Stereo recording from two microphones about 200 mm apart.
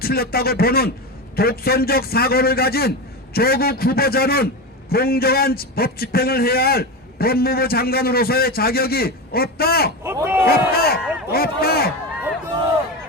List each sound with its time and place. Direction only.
0.0 s a man's voice: 50° left (ahead or behind)
10.0 s speech: 10° right (ahead or behind)
10.4 s a man's voice: 50° left (ahead or behind)